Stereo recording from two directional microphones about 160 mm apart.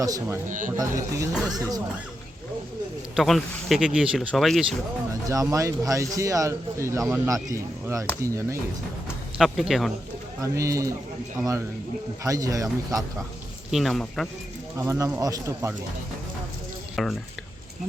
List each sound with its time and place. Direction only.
0.0 s speech: 20° right (ahead or behind)
0.4 s speech: 55° right (ahead or behind)
0.8 s speech: 20° right (ahead or behind)
3.2 s speech: centre (ahead or behind)
5.3 s speech: 20° right (ahead or behind)
9.4 s speech: centre (ahead or behind)
10.4 s speech: 20° right (ahead or behind)
13.7 s speech: centre (ahead or behind)
14.8 s speech: 20° right (ahead or behind)
16.9 s speech: centre (ahead or behind)